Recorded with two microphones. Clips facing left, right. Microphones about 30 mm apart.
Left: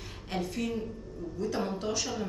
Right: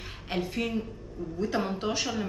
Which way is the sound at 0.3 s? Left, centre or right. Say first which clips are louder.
Right 3 dB; right.